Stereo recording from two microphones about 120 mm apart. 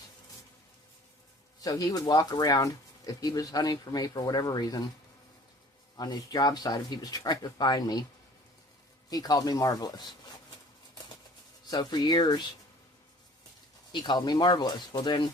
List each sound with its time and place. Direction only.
1.6 s speech: 30° left (ahead or behind)
6.0 s speech: 35° left (ahead or behind)
9.0 s speech: 30° left (ahead or behind)
11.7 s speech: 35° left (ahead or behind)
13.9 s speech: 40° left (ahead or behind)